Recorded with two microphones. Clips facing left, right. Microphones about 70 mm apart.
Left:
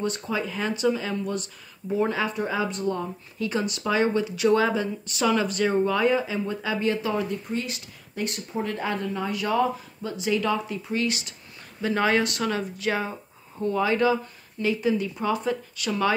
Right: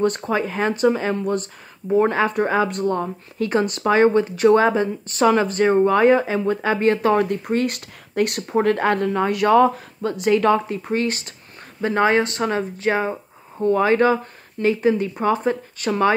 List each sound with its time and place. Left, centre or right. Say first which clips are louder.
0.0 s speech: right 7 dB; right